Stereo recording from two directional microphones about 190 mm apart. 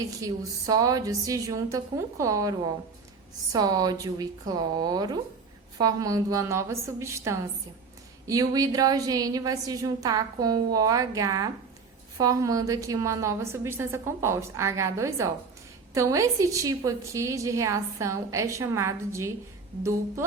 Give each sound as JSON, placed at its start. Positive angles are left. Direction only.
{"t": 0.0, "sound": "a woman's voice", "side_deg": -20}